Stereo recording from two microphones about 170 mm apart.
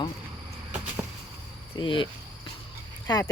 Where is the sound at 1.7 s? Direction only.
30° left (ahead or behind).